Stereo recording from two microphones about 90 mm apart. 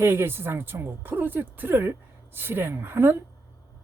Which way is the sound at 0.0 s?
30° right (ahead or behind).